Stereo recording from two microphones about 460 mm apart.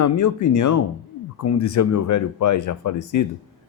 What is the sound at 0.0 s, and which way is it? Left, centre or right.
A man's voice, left.